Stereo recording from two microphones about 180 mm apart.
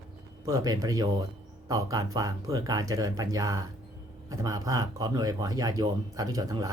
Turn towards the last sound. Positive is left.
turn(degrees=-20)  # may be behind; listen again after turning